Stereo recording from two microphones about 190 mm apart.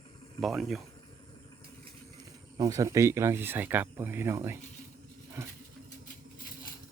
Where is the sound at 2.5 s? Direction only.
20° right (ahead or behind).